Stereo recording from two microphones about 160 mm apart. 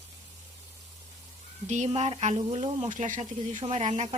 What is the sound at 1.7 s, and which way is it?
Speech, 45° right (ahead or behind).